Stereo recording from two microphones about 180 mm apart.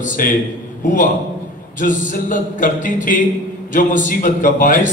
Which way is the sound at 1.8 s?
45° left (ahead or behind).